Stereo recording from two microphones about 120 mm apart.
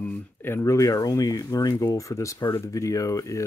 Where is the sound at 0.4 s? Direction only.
20° left (ahead or behind).